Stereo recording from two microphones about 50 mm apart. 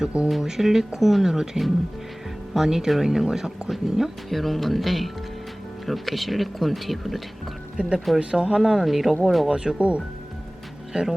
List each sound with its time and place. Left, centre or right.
0.3 s speech: centre
7.8 s speech: centre
9.5 s speech: centre